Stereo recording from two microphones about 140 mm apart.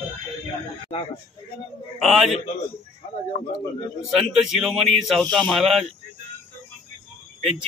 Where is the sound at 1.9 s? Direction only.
Centre (ahead or behind).